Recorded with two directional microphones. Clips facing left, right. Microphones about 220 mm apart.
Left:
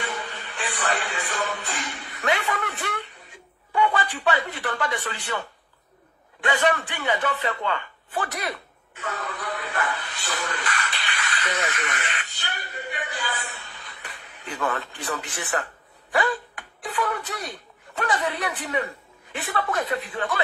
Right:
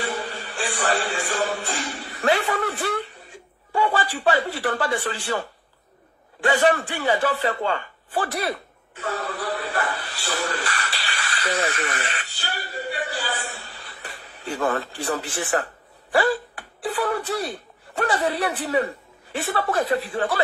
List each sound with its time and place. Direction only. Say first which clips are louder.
0.1 s music: right 4 dB; 35° right (ahead or behind)
3.7 s speech: right 1 dB; 35° right (ahead or behind)
6.4 s a sound: right 4 dB; 40° right (ahead or behind)
14.8 s speech: right 5 dB; 30° right (ahead or behind)